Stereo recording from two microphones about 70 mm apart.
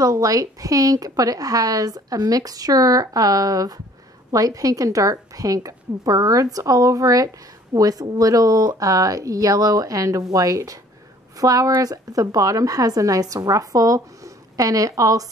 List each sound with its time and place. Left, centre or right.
0.0 s speech: right